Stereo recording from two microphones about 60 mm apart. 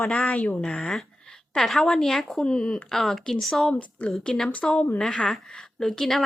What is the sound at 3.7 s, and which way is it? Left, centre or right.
A woman's voice, left.